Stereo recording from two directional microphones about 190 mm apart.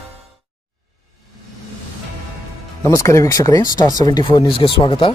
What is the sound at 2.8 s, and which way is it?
Speech, 15° left (ahead or behind).